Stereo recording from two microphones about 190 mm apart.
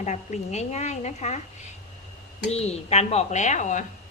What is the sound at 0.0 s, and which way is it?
A woman's voice, 40° left (ahead or behind).